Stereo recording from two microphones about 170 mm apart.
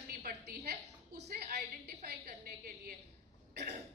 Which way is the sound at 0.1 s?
60° right (ahead or behind).